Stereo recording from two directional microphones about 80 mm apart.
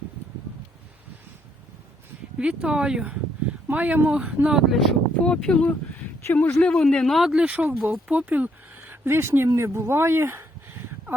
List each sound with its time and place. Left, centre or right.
2.4 s speech: centre
4.7 s a man's voice: centre
7.3 s speech: centre
8.9 s speech: right